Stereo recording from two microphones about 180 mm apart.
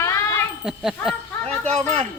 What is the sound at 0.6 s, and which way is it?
Speech, 5° right (ahead or behind).